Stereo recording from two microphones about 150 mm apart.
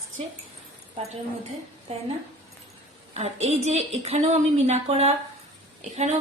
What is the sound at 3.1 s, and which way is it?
A woman's voice, 45° right (ahead or behind).